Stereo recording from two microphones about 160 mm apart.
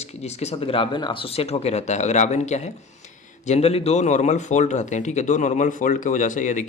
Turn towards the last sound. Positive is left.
turn(degrees=50)  # may be behind; listen again after turning